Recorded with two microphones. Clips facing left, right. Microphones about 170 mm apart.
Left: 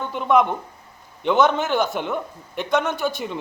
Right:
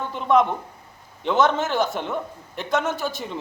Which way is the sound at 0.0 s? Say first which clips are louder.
Left 1 dB; centre (ahead or behind).